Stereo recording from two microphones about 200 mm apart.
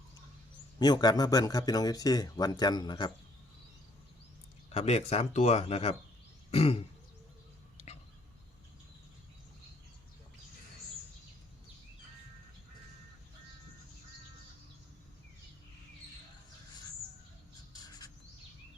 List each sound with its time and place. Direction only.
0.8 s speech: 20° left (ahead or behind)
4.7 s speech: 30° left (ahead or behind)
17.8 s bird: 20° left (ahead or behind)